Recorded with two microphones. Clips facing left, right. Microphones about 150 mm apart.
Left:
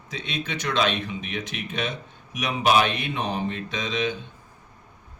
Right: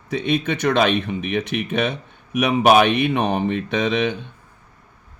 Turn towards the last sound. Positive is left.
turn(degrees=-60)  # may be behind; listen again after turning